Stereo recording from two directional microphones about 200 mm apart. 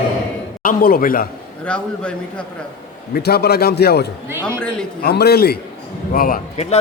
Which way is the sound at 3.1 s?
50° left (ahead or behind).